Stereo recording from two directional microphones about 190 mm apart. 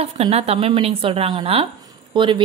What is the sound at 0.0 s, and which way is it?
A woman's voice, 35° right (ahead or behind).